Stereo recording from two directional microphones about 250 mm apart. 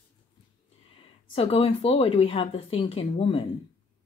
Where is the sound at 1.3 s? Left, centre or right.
Left.